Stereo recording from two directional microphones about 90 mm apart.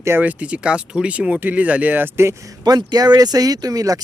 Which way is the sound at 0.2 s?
15° right (ahead or behind).